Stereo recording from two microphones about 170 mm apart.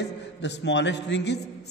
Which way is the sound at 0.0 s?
90° left.